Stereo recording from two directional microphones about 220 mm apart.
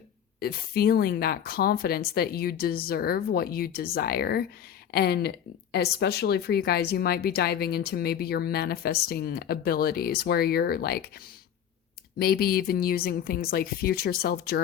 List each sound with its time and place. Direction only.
0.3 s speech: 45° left (ahead or behind)
12.2 s speech: 45° left (ahead or behind)